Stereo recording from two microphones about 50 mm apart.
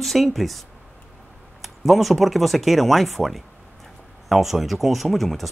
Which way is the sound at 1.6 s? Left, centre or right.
Centre.